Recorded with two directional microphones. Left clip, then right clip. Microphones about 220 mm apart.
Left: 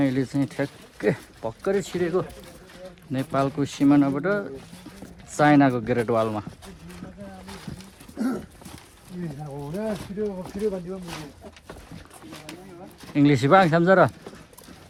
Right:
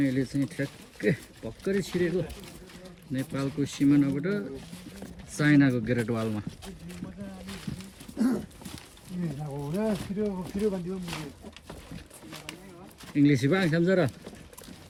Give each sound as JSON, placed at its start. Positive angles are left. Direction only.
{"t": 0.0, "sound": "speech", "side_deg": 0}
{"t": 7.4, "sound": "dog", "side_deg": 0}
{"t": 9.1, "sound": "a sound", "side_deg": -5}
{"t": 9.6, "sound": "speech", "side_deg": -25}
{"t": 10.0, "sound": "speech", "side_deg": 0}
{"t": 13.1, "sound": "speech", "side_deg": 0}